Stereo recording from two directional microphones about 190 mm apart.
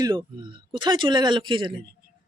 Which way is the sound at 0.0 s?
25° right (ahead or behind).